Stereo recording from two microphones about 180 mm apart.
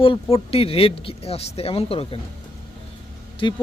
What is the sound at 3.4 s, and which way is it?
Speech, 25° left (ahead or behind).